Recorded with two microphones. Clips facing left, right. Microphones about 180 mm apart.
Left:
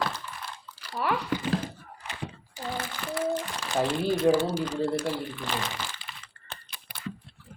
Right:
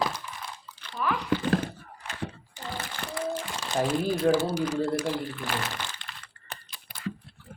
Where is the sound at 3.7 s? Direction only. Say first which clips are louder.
Even; centre (ahead or behind).